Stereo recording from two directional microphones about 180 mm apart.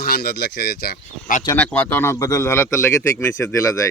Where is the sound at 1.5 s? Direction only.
10° left (ahead or behind).